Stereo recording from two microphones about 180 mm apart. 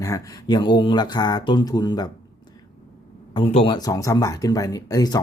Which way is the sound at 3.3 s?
30° left (ahead or behind).